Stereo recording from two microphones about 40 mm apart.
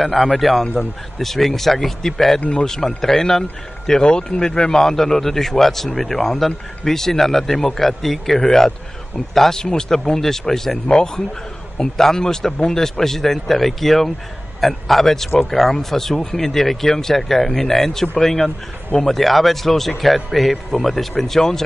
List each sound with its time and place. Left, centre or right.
0.0 s a man's voice: centre